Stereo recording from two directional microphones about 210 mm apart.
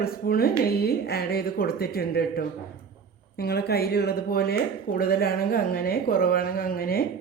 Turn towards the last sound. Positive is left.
turn(degrees=45)  # may be behind; listen again after turning